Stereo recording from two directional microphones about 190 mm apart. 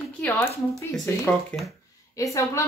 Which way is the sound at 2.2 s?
15° left (ahead or behind).